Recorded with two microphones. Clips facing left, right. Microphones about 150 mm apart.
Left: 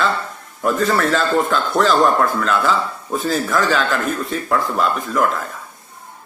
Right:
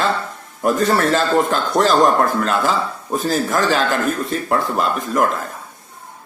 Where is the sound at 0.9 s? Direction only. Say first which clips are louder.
Right 1 dB; 45° right (ahead or behind).